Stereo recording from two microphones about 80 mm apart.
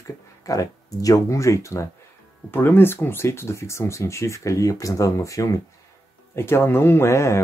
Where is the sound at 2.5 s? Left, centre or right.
Left.